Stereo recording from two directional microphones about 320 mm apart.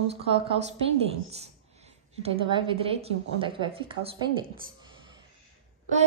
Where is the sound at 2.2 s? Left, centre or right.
Centre.